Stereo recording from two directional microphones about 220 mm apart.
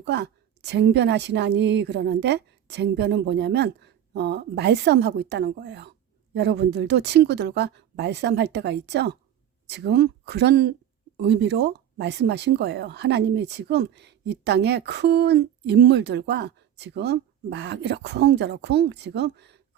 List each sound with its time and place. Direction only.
0.0 s speech: 50° right (ahead or behind)